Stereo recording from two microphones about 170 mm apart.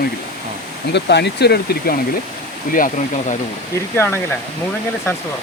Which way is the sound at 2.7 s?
50° left (ahead or behind).